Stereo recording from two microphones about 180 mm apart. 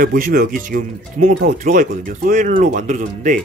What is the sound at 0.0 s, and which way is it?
Speech, 50° right (ahead or behind).